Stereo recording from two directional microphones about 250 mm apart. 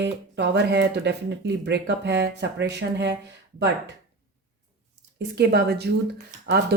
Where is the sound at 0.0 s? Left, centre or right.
Right.